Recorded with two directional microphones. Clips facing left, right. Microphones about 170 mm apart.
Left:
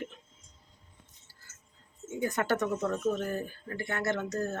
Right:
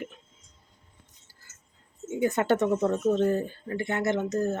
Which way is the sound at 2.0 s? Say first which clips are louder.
Right 6 dB; 25° right (ahead or behind).